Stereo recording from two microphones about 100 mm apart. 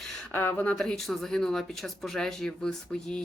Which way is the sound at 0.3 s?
20° left (ahead or behind).